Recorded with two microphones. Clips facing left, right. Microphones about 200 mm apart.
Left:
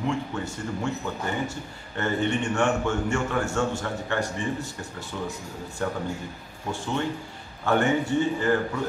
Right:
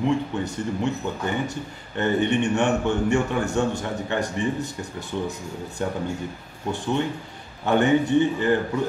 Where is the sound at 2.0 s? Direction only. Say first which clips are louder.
Right 4 dB; 20° right (ahead or behind).